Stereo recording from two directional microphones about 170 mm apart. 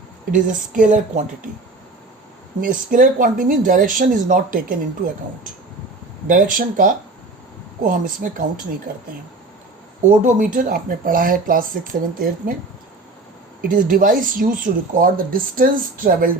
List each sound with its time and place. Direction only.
0.3 s speech: 50° right (ahead or behind)
2.6 s speech: 55° right (ahead or behind)
6.2 s speech: 55° right (ahead or behind)
10.2 s speech: 50° right (ahead or behind)
13.6 s speech: 55° right (ahead or behind)